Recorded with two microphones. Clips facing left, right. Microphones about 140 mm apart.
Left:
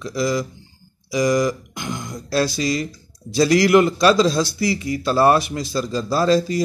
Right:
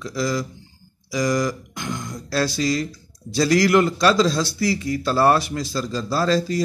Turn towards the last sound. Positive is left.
turn(degrees=15)  # may be behind; listen again after turning